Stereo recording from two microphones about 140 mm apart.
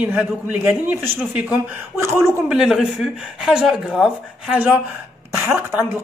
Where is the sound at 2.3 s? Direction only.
10° right (ahead or behind).